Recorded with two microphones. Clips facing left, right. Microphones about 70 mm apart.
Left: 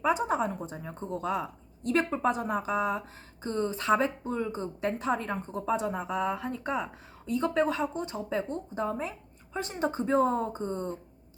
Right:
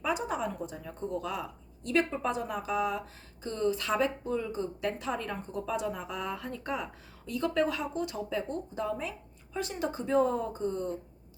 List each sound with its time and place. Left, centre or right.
0.0 s a woman's voice: left
6.4 s a woman's voice: centre; by 10.9 s left